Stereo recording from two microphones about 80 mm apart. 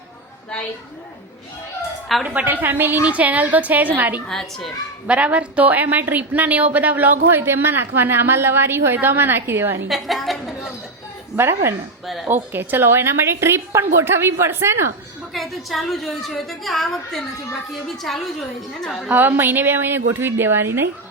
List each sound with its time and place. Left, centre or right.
2.2 s a woman's voice: right
4.3 s a woman's voice: centre
5.0 s a woman's voice: centre
9.9 s a woman's voice: centre
11.3 s a woman's voice: right
12.0 s a woman's voice: centre
12.3 s a woman's voice: right
15.3 s a woman's voice: centre
19.1 s a woman's voice: right